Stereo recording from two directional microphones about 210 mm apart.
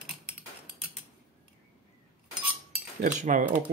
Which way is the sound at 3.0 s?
40° right (ahead or behind).